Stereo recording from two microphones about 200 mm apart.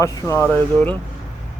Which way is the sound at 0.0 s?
15° left (ahead or behind).